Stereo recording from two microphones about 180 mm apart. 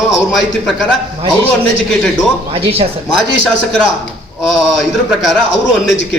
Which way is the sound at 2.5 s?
30° right (ahead or behind).